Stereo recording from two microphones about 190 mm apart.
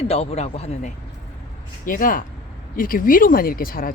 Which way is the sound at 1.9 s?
45° left (ahead or behind).